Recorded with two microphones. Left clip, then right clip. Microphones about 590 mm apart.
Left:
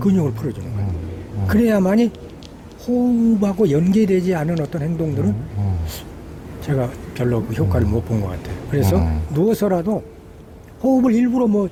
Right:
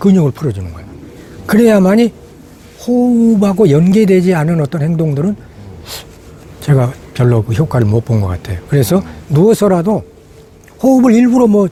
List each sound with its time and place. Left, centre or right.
0.0 s a man's voice: right
3.4 s a man's voice: right
6.6 s a man's voice: right